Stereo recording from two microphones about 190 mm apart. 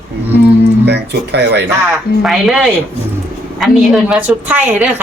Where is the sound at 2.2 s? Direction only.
Centre (ahead or behind).